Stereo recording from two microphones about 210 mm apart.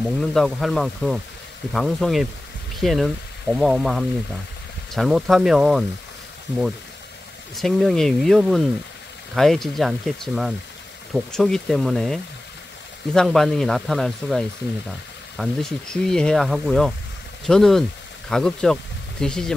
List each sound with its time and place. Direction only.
0.0 s speech: centre (ahead or behind)
7.5 s speech: centre (ahead or behind)